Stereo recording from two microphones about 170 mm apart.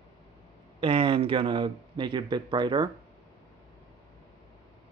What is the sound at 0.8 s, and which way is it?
Speech, 30° right (ahead or behind).